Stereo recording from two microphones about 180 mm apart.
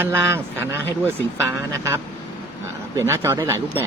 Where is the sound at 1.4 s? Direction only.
15° right (ahead or behind).